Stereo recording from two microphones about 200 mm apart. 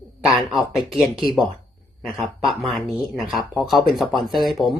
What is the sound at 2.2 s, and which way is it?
Speech, centre (ahead or behind).